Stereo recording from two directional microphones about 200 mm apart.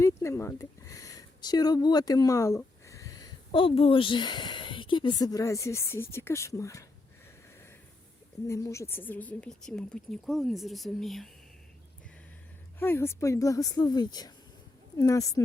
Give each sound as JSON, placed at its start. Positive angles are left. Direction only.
{"t": 0.0, "sound": "speech", "side_deg": 15}
{"t": 8.4, "sound": "speech", "side_deg": 15}
{"t": 12.8, "sound": "a woman's voice", "side_deg": 10}